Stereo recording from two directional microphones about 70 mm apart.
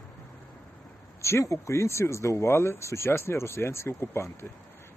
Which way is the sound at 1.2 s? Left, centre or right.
Left.